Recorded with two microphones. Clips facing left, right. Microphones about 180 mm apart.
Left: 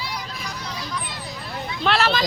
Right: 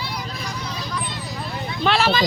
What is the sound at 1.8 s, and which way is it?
Speech, centre (ahead or behind).